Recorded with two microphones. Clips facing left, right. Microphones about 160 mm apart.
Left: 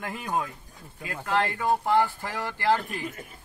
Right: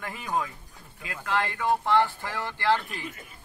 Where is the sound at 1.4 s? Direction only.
40° left (ahead or behind).